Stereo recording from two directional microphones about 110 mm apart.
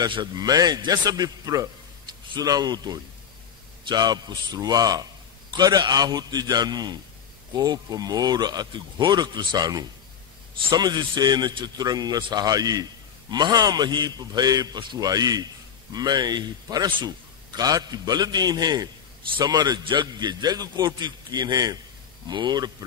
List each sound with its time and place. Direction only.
0.0 s a man's voice: 40° right (ahead or behind)